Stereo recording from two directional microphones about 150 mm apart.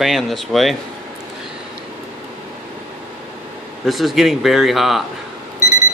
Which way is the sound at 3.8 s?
Centre (ahead or behind).